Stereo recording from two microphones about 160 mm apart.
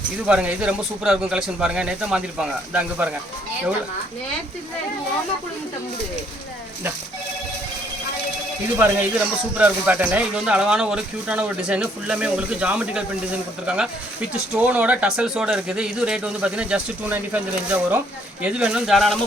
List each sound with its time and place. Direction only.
0.3 s speech: 5° right (ahead or behind)
8.8 s speech: 10° right (ahead or behind)